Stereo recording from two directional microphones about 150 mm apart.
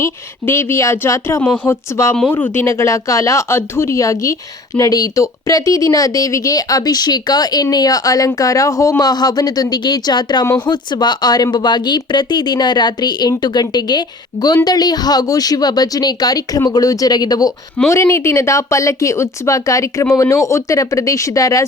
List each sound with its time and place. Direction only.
0.0 s speech: 15° left (ahead or behind)